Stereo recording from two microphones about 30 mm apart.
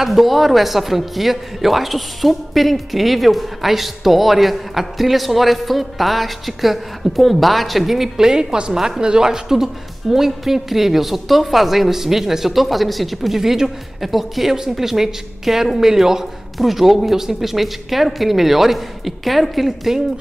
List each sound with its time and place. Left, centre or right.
0.0 s a man's voice: centre
8.2 s a woman's voice: right; by 13.4 s centre
13.4 s a woman's voice: centre
16.5 s a man's voice: centre